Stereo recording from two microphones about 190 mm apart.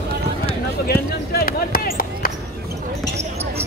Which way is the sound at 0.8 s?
55° left (ahead or behind).